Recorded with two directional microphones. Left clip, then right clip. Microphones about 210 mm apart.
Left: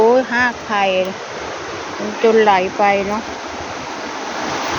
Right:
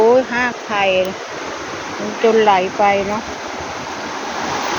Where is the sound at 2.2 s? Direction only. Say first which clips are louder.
Even; 10° left (ahead or behind).